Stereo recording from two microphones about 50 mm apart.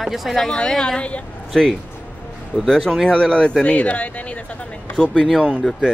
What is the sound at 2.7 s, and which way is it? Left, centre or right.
Speech, centre.